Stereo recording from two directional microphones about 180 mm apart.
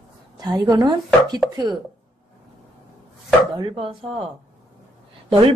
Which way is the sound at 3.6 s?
30° right (ahead or behind).